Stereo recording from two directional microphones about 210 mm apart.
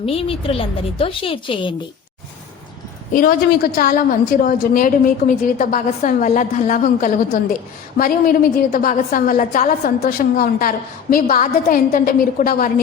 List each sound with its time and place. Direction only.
0.0 s a woman's voice: 25° left (ahead or behind)
3.1 s a woman's voice: 40° left (ahead or behind)